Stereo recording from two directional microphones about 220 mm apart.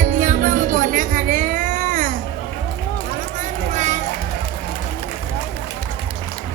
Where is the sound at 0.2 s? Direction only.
35° right (ahead or behind).